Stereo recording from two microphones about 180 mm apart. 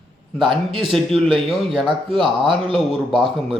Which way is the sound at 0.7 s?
30° right (ahead or behind).